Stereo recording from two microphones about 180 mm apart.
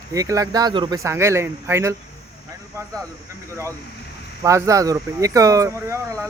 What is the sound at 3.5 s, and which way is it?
Speech, 15° right (ahead or behind).